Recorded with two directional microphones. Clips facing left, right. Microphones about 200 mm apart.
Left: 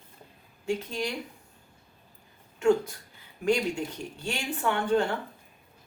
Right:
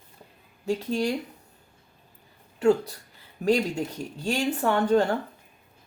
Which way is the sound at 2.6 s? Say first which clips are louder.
Right 2 dB; 35° right (ahead or behind).